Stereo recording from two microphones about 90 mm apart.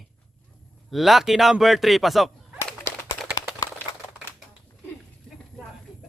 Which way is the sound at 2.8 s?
35° left (ahead or behind).